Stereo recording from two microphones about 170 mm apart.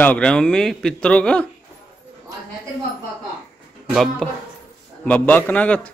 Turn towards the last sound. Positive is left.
turn(degrees=10)  # may be behind; listen again after turning